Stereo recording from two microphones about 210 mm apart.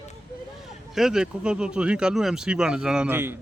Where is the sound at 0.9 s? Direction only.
Centre (ahead or behind).